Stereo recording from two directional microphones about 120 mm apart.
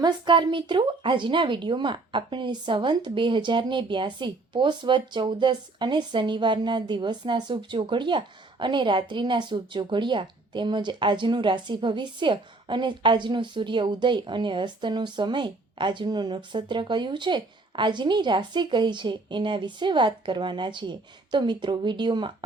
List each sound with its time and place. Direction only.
0.0 s speech: 40° right (ahead or behind)